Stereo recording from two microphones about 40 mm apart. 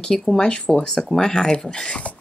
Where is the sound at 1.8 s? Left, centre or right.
Left.